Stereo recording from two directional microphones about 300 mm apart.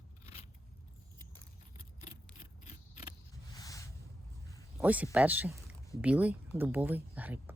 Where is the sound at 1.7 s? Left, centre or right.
Centre.